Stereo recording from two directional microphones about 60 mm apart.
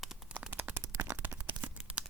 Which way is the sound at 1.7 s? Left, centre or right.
Centre.